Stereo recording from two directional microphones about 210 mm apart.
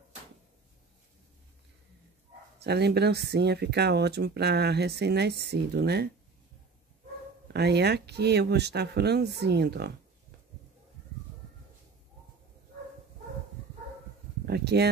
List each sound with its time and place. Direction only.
2.6 s speech: 50° right (ahead or behind)
7.5 s speech: 50° right (ahead or behind)
14.4 s speech: 50° right (ahead or behind)